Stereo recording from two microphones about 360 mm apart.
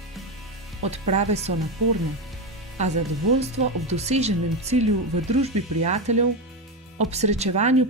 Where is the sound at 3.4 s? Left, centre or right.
Centre.